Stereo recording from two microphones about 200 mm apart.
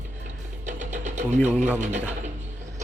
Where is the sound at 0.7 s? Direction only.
35° right (ahead or behind).